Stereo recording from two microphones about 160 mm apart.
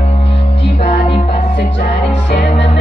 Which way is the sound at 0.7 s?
40° left (ahead or behind).